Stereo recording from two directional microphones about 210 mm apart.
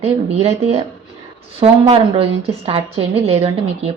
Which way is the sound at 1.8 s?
25° right (ahead or behind).